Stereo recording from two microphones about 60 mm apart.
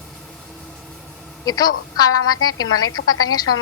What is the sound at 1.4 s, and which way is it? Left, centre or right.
A woman's voice, left.